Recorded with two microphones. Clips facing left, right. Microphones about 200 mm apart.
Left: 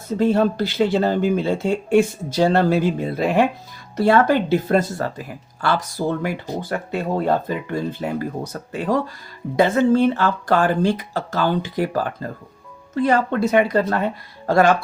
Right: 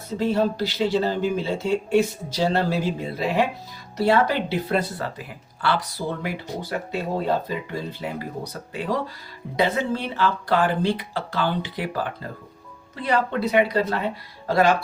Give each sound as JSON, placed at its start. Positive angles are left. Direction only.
{"t": 0.2, "sound": "speech", "side_deg": 55}